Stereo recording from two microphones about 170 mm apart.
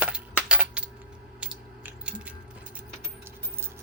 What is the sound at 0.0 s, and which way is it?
Coin, 5° right (ahead or behind).